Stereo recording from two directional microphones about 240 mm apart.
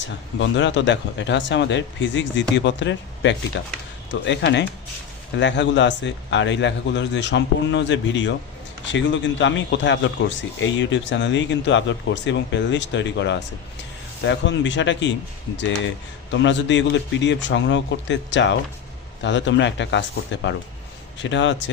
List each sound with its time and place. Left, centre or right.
0.3 s a man's voice: left
16.3 s a man's voice: left